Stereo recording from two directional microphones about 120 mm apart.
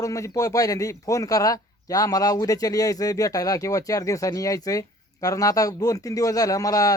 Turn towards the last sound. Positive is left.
turn(degrees=30)  # may be behind; listen again after turning